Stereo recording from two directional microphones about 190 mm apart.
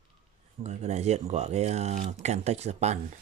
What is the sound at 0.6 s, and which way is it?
Speech, 35° right (ahead or behind).